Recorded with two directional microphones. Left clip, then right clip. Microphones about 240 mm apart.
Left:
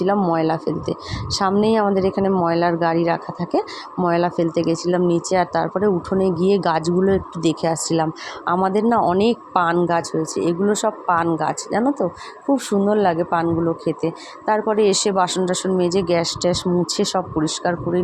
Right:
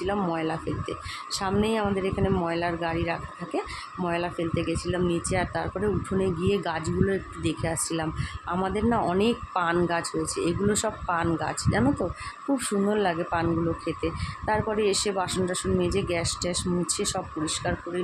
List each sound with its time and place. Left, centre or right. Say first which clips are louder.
0.0 s speech: left 9 dB; centre